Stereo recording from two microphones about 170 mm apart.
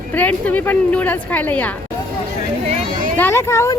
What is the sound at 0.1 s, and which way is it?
Speech, 10° left (ahead or behind).